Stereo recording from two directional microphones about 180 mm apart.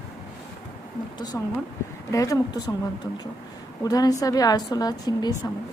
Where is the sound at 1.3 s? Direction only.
10° left (ahead or behind).